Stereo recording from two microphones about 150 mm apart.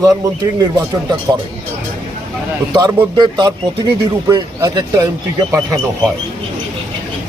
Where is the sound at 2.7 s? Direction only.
25° right (ahead or behind).